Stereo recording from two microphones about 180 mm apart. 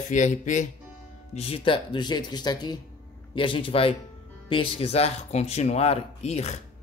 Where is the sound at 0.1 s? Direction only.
45° left (ahead or behind).